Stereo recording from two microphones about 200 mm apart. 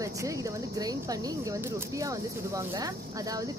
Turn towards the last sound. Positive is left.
turn(degrees=-20)  # may be behind; listen again after turning